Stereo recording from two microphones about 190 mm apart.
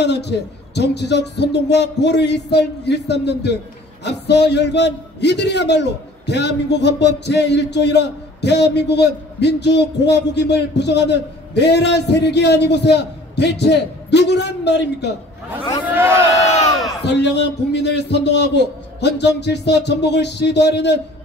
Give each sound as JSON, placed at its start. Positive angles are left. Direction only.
{"t": 0.0, "sound": "a man's voice", "side_deg": 65}
{"t": 15.9, "sound": "speech", "side_deg": -10}
{"t": 17.0, "sound": "a man's voice", "side_deg": 65}